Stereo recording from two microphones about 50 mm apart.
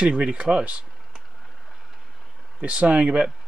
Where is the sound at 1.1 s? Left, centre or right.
Centre.